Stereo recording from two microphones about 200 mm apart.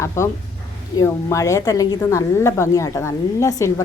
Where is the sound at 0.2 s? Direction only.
15° left (ahead or behind).